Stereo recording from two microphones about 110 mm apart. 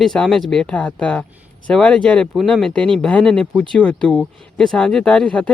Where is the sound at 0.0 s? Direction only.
5° left (ahead or behind).